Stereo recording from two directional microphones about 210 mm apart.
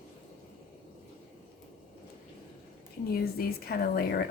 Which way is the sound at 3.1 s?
45° left (ahead or behind).